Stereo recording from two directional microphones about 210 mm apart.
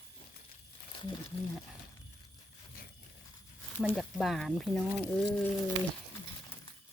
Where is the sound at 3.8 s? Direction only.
Centre (ahead or behind).